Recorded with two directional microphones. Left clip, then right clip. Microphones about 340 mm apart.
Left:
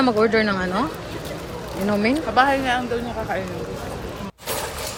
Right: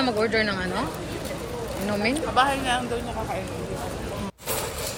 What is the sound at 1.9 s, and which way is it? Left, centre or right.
Speech, centre.